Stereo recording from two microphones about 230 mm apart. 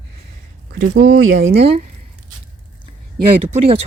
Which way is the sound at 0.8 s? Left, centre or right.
Right.